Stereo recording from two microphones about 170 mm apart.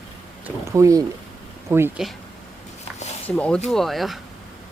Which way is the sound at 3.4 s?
5° left (ahead or behind).